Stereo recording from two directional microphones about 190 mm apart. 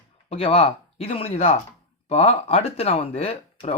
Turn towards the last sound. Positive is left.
turn(degrees=30)  # may be behind; listen again after turning